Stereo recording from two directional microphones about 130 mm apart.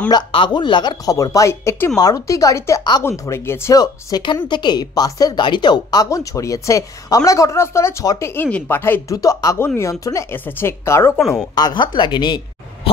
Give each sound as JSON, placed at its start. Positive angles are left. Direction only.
{"t": 0.1, "sound": "speech", "side_deg": 35}
{"t": 8.4, "sound": "speech", "side_deg": 15}
{"t": 9.1, "sound": "speech", "side_deg": 25}
{"t": 11.1, "sound": "speech", "side_deg": 0}
{"t": 11.5, "sound": "a woman's voice", "side_deg": 35}